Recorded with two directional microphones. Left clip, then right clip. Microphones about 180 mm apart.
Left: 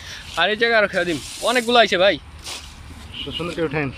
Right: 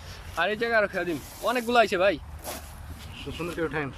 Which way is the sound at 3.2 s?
Centre (ahead or behind).